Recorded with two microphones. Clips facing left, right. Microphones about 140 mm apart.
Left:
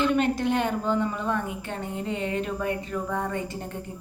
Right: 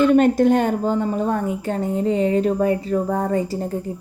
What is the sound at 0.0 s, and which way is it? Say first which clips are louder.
A woman's voice: right 9 dB; 45° right (ahead or behind).